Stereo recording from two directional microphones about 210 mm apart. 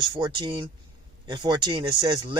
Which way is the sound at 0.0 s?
20° right (ahead or behind).